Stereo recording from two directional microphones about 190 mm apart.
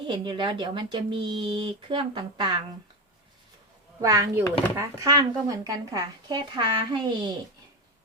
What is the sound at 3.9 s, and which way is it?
A woman's voice, 15° right (ahead or behind).